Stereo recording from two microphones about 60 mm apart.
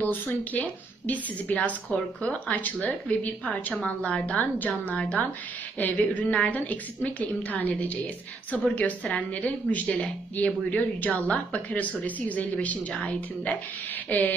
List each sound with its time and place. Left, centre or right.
0.0 s a woman's voice: left